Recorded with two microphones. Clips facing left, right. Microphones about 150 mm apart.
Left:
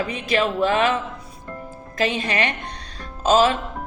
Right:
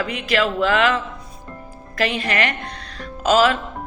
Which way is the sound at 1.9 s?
20° left (ahead or behind).